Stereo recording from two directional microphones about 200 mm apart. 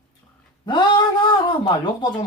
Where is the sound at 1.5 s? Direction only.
20° left (ahead or behind).